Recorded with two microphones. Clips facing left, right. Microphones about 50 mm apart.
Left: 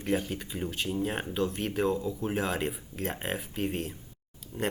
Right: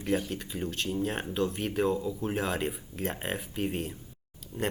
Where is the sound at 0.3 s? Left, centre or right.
Centre.